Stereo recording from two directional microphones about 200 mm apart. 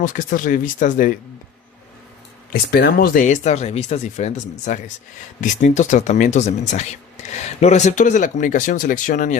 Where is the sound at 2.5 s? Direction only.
50° left (ahead or behind).